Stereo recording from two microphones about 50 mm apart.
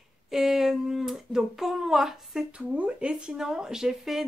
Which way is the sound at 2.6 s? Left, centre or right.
Right.